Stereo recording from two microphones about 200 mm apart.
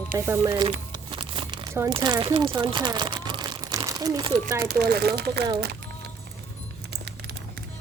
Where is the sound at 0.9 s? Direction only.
25° right (ahead or behind).